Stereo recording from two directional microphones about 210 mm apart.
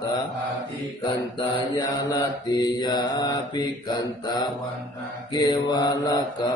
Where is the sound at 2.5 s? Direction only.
20° left (ahead or behind).